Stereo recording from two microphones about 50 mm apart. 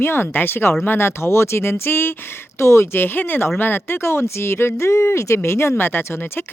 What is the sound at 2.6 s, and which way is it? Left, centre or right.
Speech, left.